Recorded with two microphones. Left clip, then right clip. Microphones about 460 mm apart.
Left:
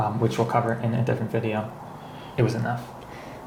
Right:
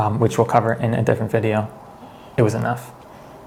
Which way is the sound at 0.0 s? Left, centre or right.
Right.